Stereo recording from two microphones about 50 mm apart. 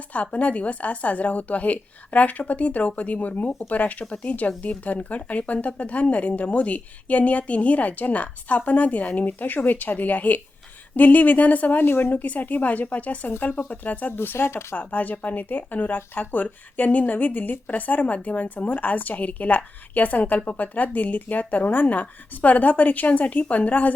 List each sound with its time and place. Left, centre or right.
0.1 s a woman's voice: left
11.8 s speech: left
12.1 s speech: left
14.2 s speech: left
14.8 s speech: left